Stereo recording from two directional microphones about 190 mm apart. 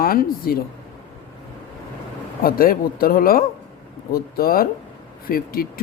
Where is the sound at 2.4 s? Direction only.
50° left (ahead or behind).